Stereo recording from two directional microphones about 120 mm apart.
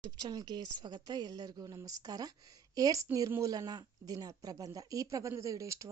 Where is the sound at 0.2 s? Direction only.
35° right (ahead or behind).